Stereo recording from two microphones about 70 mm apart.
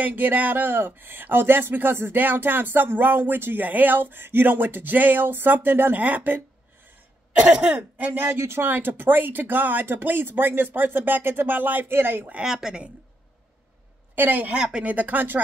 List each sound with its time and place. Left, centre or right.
0.0 s speech: right
7.3 s speech: centre; by 12.4 s right
12.4 s speech: centre
14.1 s speech: right
14.6 s speech: centre